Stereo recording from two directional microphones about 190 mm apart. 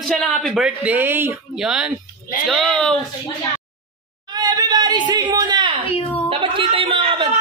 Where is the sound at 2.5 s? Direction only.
Centre (ahead or behind).